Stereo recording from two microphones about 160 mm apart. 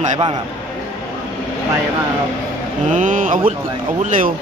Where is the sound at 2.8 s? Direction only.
50° right (ahead or behind).